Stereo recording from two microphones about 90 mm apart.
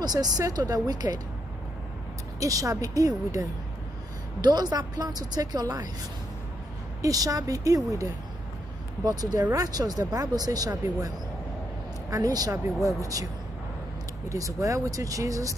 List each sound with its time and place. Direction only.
0.0 s speech: 45° right (ahead or behind)
2.4 s speech: 40° right (ahead or behind)
4.4 s speech: 50° right (ahead or behind)
7.0 s speech: 40° right (ahead or behind)
12.1 s speech: 40° right (ahead or behind)
14.3 s speech: 35° right (ahead or behind)